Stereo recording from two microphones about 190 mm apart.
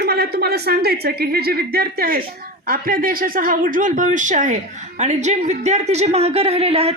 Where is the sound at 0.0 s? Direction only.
55° right (ahead or behind).